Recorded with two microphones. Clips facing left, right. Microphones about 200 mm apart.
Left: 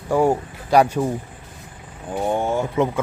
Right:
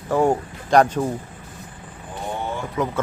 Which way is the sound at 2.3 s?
45° left (ahead or behind).